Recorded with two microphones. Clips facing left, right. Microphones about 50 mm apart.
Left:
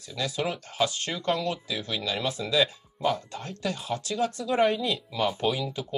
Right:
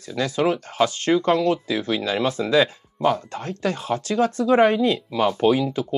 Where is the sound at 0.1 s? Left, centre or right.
Right.